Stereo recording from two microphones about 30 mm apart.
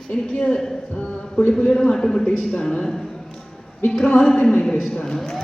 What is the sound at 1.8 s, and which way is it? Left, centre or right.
A woman's voice, centre.